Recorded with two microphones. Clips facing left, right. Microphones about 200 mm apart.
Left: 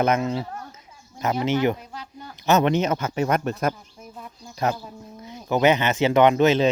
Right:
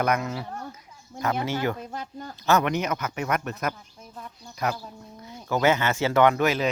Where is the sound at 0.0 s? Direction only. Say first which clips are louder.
Left 4 dB; 25° left (ahead or behind).